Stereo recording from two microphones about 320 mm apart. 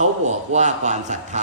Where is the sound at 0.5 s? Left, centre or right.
Right.